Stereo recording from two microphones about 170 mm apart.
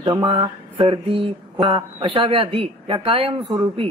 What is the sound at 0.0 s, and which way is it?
Speech, 25° right (ahead or behind).